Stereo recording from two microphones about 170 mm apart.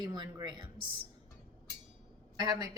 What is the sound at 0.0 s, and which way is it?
Speech, 25° right (ahead or behind).